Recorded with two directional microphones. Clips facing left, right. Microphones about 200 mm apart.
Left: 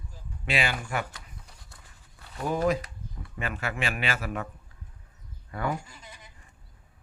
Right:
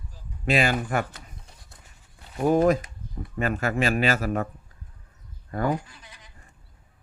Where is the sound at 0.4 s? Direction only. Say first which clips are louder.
Right 7 dB; 45° right (ahead or behind).